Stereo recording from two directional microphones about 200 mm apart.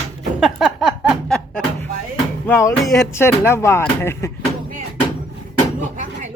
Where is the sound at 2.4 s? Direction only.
15° left (ahead or behind).